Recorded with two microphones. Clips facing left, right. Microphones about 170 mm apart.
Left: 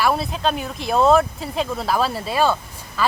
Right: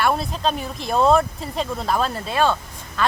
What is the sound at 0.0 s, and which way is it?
Speech, 5° left (ahead or behind).